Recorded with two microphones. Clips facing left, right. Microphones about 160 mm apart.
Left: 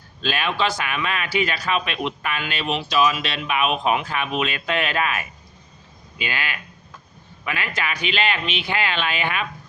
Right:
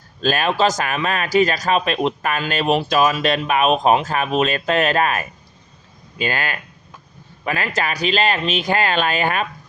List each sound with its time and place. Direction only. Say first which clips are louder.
0.2 s speech: right 6 dB; 40° right (ahead or behind)